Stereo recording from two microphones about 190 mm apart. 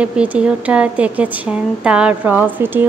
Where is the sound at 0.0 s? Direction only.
5° right (ahead or behind).